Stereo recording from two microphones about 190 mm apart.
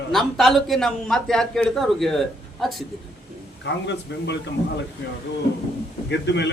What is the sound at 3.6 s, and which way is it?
Speech, 65° left (ahead or behind).